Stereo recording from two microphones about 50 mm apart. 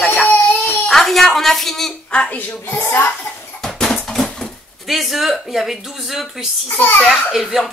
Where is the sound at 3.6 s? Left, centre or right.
Centre.